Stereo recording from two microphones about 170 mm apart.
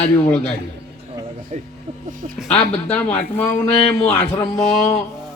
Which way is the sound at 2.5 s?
40° left (ahead or behind).